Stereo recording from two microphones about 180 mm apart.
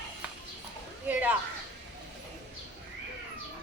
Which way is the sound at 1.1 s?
10° right (ahead or behind).